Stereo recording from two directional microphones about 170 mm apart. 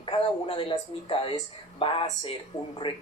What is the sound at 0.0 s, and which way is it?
Speech, 30° left (ahead or behind).